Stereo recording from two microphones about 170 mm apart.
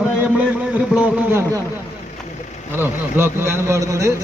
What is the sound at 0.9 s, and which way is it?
Speech, 10° right (ahead or behind).